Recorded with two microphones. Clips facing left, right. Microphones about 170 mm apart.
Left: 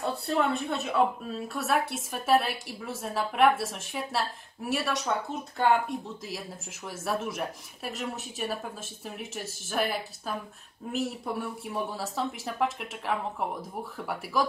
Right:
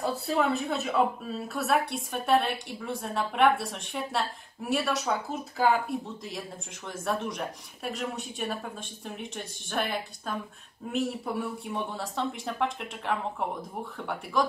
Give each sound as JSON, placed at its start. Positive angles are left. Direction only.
{"t": 0.0, "sound": "a woman's voice", "side_deg": 0}